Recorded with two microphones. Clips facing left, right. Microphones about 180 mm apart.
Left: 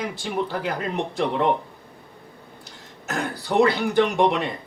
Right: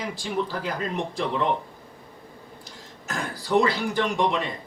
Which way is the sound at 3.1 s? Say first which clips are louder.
Even; 60° left (ahead or behind).